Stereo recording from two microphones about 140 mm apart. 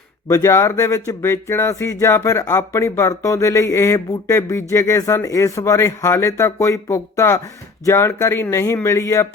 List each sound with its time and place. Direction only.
0.3 s speech: 20° left (ahead or behind)